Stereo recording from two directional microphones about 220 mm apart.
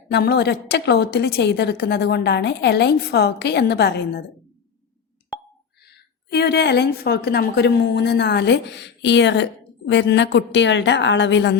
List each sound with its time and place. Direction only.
0.1 s a woman's voice: 45° left (ahead or behind)
6.3 s a woman's voice: 50° left (ahead or behind)